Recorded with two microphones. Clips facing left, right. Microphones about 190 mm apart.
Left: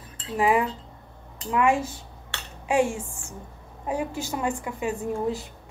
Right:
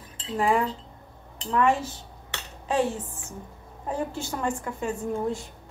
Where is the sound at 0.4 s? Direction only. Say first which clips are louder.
Left 2 dB; 5° left (ahead or behind).